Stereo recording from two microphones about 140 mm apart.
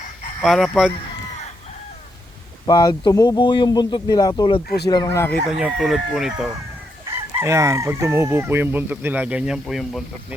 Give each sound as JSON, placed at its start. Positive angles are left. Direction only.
{"t": 0.4, "sound": "speech", "side_deg": 0}
{"t": 2.6, "sound": "speech", "side_deg": 30}
{"t": 5.5, "sound": "speech", "side_deg": -5}
{"t": 7.1, "sound": "chicken", "side_deg": -20}